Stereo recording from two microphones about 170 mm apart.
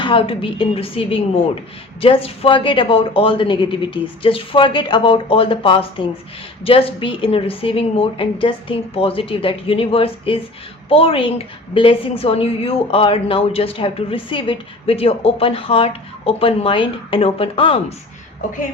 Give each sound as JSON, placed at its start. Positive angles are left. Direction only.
{"t": 0.0, "sound": "a woman's voice", "side_deg": 30}